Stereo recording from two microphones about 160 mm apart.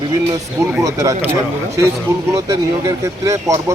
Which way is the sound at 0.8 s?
20° right (ahead or behind).